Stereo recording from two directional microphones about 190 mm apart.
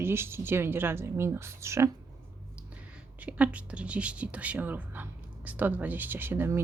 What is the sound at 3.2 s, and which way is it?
Speech, 5° right (ahead or behind).